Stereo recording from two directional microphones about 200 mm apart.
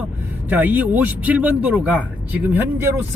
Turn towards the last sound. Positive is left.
turn(degrees=-10)  # may be behind; listen again after turning